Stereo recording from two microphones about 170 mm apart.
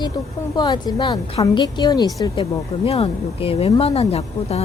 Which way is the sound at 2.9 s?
35° left (ahead or behind).